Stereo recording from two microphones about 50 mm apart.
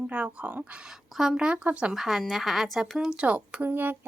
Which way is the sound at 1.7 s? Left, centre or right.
Right.